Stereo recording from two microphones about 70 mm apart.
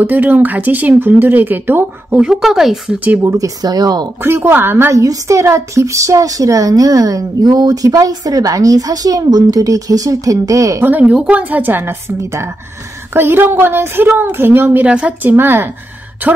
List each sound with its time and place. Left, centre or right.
0.0 s speech: right
2.1 s speech: centre
3.2 s speech: right
4.2 s a woman's voice: right
4.9 s a woman's voice: right
10.8 s speech: right
12.2 s a woman's voice: right
14.9 s speech: centre
15.2 s a woman's voice: right